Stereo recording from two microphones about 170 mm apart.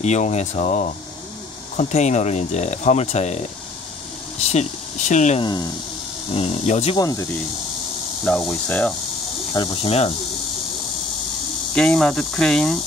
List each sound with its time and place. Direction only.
0.0 s speech: 40° left (ahead or behind)
4.5 s speech: 40° left (ahead or behind)
5.4 s speech: 25° left (ahead or behind)
6.3 s speech: 40° left (ahead or behind)
7.0 s speech: 20° left (ahead or behind)
8.2 s cricket: centre (ahead or behind)
9.8 s speech: 35° left (ahead or behind)
11.7 s cricket: 5° left (ahead or behind)